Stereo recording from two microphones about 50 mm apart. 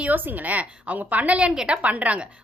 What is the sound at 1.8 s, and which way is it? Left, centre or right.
Speech, right.